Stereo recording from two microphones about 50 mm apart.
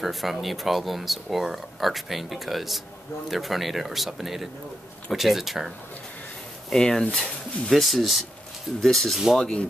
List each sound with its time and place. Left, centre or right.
0.0 s speech: centre
6.7 s speech: centre
7.7 s speech: centre
9.4 s speech: centre